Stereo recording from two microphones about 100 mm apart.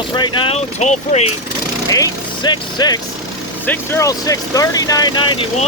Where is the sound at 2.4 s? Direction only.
45° left (ahead or behind).